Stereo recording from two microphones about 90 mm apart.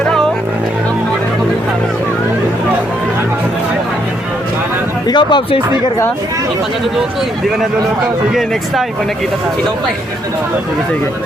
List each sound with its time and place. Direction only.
0.0 s vehicle: 5° left (ahead or behind)
5.0 s speech: 55° left (ahead or behind)
8.3 s speech: centre (ahead or behind)